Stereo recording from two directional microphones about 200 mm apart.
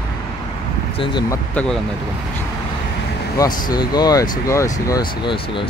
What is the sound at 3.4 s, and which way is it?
Speech, 20° left (ahead or behind).